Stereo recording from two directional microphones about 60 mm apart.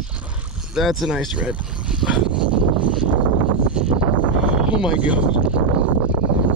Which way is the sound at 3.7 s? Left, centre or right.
Centre.